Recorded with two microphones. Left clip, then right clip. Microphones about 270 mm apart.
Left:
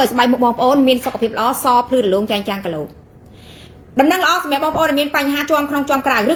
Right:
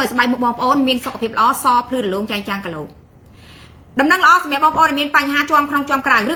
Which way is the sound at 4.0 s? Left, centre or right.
Centre.